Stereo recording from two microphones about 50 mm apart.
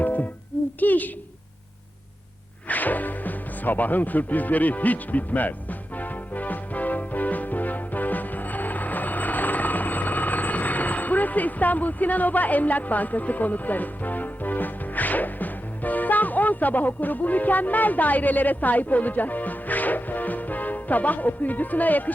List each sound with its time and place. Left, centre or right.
0.0 s music: left
0.8 s a woman's voice: left
2.6 s speech: left
6.0 s music: left